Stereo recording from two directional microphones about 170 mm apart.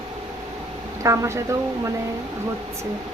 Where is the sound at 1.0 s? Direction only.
20° right (ahead or behind).